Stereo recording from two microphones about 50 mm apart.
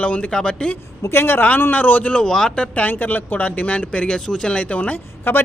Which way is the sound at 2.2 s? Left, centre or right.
Centre.